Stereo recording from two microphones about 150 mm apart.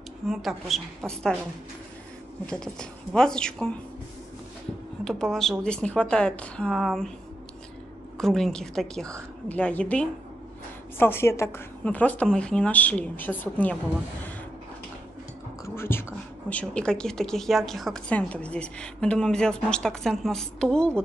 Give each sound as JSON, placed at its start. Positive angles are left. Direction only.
{"t": 0.3, "sound": "a woman's voice", "side_deg": 0}
{"t": 2.4, "sound": "a woman's voice", "side_deg": 5}
{"t": 5.0, "sound": "a woman's voice", "side_deg": 5}
{"t": 8.2, "sound": "a woman's voice", "side_deg": 5}
{"t": 15.6, "sound": "whispering", "side_deg": 15}
{"t": 16.4, "sound": "a woman's voice", "side_deg": 10}